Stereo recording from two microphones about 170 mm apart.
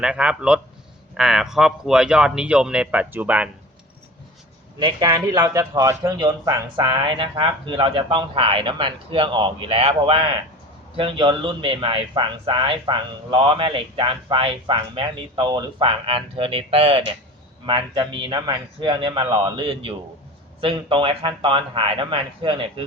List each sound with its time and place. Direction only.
0.0 s speech: 5° right (ahead or behind)
4.8 s a man's voice: 25° right (ahead or behind)